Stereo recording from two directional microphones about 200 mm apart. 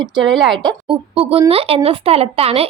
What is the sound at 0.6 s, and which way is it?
Speech, 30° right (ahead or behind).